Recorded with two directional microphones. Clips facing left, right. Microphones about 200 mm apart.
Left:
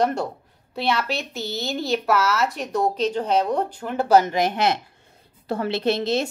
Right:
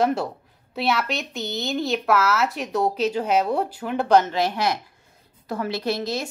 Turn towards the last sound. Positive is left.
turn(degrees=25)  # may be behind; listen again after turning